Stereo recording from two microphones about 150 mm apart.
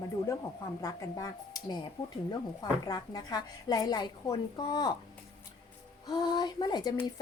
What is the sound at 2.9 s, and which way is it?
A woman's voice, 25° left (ahead or behind).